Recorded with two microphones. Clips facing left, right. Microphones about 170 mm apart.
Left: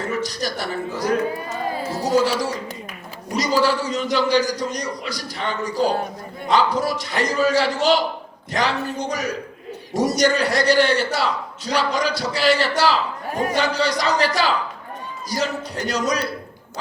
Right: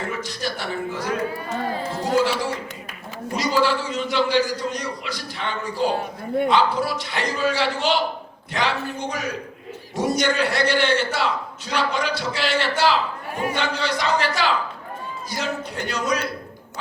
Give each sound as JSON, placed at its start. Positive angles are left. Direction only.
{"t": 0.2, "sound": "a man's voice", "side_deg": 40}
{"t": 1.9, "sound": "music", "side_deg": 40}
{"t": 3.3, "sound": "a man's voice", "side_deg": 40}